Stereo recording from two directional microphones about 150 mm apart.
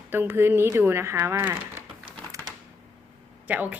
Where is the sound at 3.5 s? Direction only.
10° right (ahead or behind).